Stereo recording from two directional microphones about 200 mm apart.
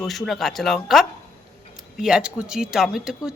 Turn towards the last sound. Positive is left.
turn(degrees=-5)  # may be behind; listen again after turning